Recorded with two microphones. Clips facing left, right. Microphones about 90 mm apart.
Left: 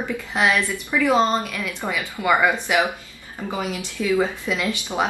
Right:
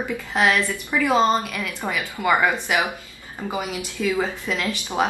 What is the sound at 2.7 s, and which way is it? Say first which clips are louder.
Speech: left 4 dB; centre (ahead or behind).